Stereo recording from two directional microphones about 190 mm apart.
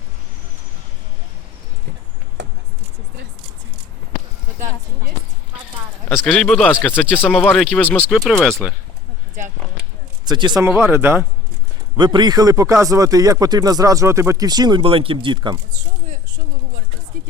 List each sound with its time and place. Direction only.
6.1 s speech: 5° left (ahead or behind)
7.9 s speech: 10° right (ahead or behind)
8.2 s speech: centre (ahead or behind)
10.2 s speech: 20° right (ahead or behind)
11.9 s speech: 25° right (ahead or behind)